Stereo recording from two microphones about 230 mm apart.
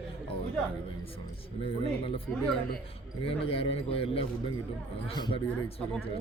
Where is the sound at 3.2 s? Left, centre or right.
Left.